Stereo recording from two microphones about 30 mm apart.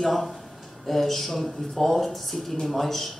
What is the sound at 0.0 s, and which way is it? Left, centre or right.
Speech, centre.